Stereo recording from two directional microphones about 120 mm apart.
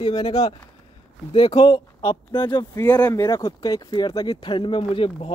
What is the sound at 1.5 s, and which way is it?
Speech, 40° left (ahead or behind).